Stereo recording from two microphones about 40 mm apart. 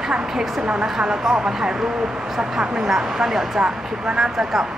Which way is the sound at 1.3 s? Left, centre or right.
Centre.